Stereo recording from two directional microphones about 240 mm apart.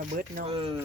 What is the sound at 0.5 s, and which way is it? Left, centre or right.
Speech, right.